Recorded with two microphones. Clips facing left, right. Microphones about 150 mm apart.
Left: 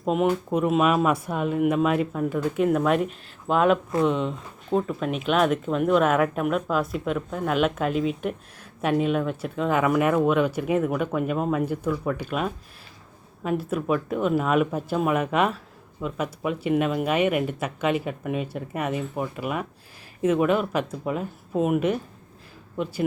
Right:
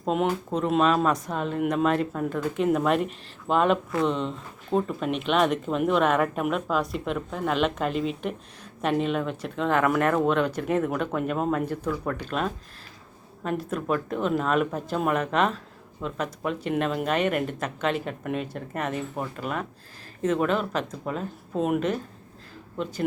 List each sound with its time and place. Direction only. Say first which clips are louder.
0.0 s speech: left 2 dB; 5° left (ahead or behind)